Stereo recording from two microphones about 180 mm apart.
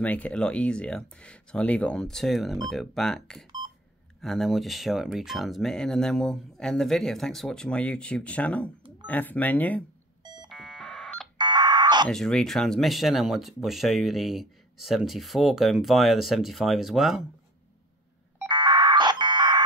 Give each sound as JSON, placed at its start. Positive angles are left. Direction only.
{"t": 0.0, "sound": "speech", "side_deg": 10}
{"t": 10.2, "sound": "fire alarm", "side_deg": -25}
{"t": 10.5, "sound": "fire alarm", "side_deg": 0}
{"t": 11.3, "sound": "a sound", "side_deg": -25}
{"t": 12.1, "sound": "speech", "side_deg": 5}
{"t": 18.5, "sound": "a sound", "side_deg": -25}